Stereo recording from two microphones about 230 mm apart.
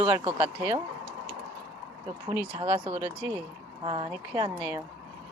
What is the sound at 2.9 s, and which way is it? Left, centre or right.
Speech, centre.